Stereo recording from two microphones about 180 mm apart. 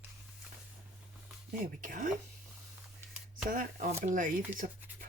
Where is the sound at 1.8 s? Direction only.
50° right (ahead or behind).